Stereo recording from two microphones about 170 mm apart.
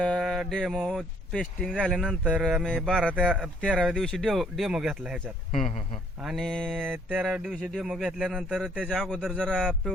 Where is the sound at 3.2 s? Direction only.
5° right (ahead or behind).